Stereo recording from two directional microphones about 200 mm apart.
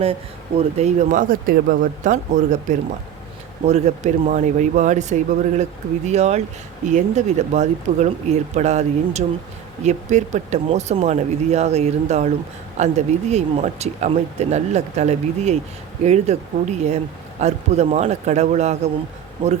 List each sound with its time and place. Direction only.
0.8 s speech: 35° right (ahead or behind)